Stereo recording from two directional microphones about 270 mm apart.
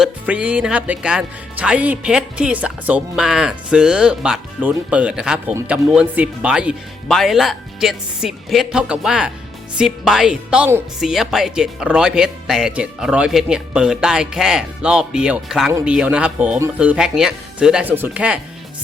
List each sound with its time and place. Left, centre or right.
0.0 s speech: centre